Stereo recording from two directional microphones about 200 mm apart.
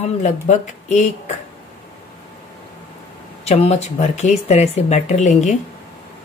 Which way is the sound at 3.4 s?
30° left (ahead or behind).